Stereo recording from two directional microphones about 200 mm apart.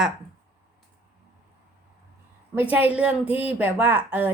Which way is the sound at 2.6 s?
10° right (ahead or behind).